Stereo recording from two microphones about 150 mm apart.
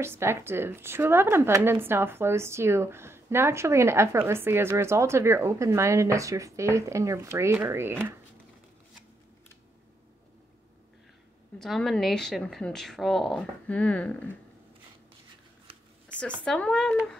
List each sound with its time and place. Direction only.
0.0 s speech: 15° right (ahead or behind)
11.5 s a woman's voice: centre (ahead or behind)
16.4 s a woman's voice: 5° left (ahead or behind)